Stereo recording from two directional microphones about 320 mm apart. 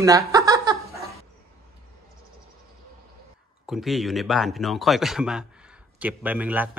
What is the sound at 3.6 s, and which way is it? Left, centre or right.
Speech, centre.